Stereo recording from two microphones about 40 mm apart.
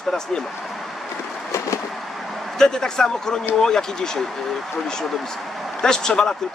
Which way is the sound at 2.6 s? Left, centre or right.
Centre.